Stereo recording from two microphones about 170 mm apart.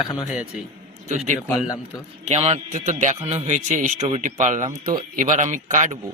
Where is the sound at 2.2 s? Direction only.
40° right (ahead or behind).